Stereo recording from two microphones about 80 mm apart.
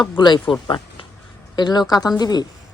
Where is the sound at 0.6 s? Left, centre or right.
Left.